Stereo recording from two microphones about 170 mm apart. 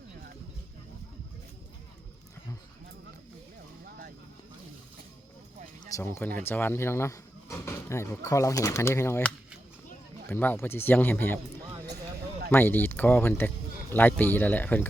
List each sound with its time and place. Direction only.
5.9 s speech: 15° left (ahead or behind)
12.5 s speech: 10° left (ahead or behind)